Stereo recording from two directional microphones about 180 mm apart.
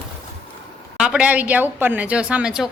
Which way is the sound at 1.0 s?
5° right (ahead or behind).